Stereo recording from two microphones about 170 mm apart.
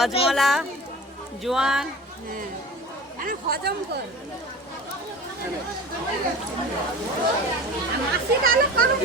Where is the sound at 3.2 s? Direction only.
60° right (ahead or behind).